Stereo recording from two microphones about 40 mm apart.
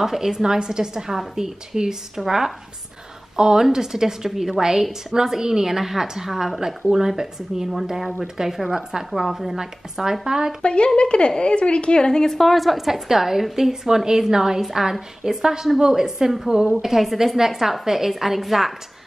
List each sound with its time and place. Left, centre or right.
0.0 s a woman's voice: centre
10.6 s a woman's voice: left; by 18.7 s centre